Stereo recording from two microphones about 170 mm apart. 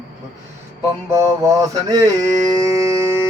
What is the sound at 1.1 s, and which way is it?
Mantra, 20° right (ahead or behind).